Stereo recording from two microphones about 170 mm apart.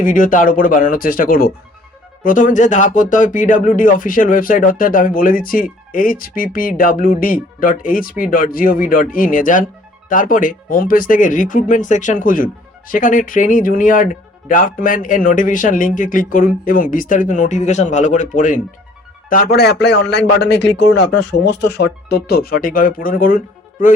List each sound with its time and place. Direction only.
0.0 s speech: 50° left (ahead or behind)
19.3 s a man's voice: 65° left (ahead or behind)